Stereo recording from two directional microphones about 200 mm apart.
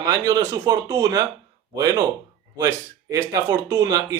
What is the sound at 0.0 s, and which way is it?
Speech, 20° right (ahead or behind).